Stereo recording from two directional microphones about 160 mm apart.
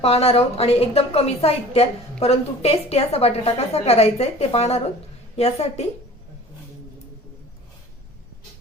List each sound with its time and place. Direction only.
0.0 s a woman's voice: 40° left (ahead or behind)